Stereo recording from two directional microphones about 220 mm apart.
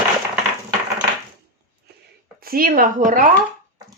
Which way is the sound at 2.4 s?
40° right (ahead or behind).